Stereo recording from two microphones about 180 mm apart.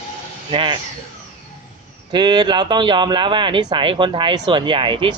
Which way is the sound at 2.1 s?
25° right (ahead or behind).